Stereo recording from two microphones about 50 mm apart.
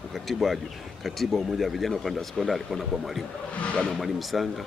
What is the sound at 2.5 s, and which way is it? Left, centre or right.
Speech, centre.